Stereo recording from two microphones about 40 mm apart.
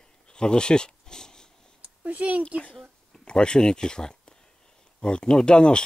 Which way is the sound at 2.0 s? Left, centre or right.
Right.